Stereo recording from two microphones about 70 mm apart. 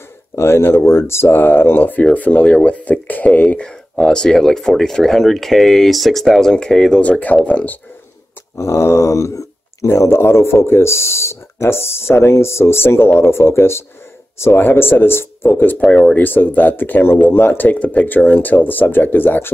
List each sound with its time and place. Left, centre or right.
0.4 s speech: left
8.5 s speech: left
15.8 s speech: centre
16.2 s speech: left